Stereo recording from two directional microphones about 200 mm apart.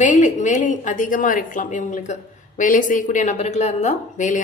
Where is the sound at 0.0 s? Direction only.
40° left (ahead or behind).